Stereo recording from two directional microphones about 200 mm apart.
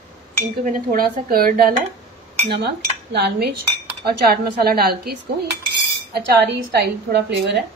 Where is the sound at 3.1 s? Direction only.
55° right (ahead or behind).